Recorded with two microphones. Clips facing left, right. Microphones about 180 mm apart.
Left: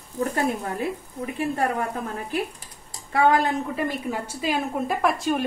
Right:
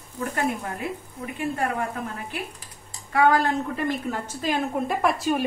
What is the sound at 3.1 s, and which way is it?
Speech, 25° left (ahead or behind).